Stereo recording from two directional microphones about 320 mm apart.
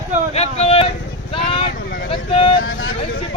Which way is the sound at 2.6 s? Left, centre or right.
Left.